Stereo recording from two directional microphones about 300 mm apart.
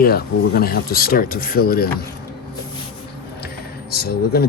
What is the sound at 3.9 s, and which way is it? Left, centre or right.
Speech, left.